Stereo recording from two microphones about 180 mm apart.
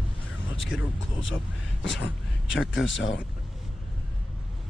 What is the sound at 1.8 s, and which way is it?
Speech, 85° left.